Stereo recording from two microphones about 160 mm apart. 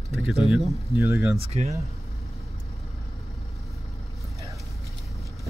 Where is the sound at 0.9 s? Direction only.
20° right (ahead or behind).